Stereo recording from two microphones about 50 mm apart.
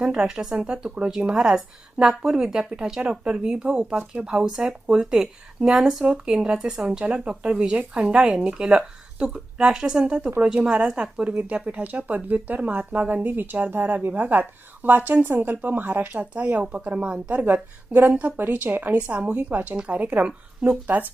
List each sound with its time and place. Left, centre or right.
0.0 s speech: centre
3.0 s speech: right
17.4 s a woman's voice: right
18.1 s speech: right
18.3 s speech: right